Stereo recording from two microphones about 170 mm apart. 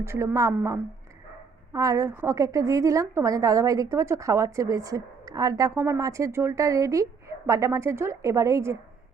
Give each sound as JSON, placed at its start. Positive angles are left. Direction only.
{"t": 0.0, "sound": "a woman's voice", "side_deg": -15}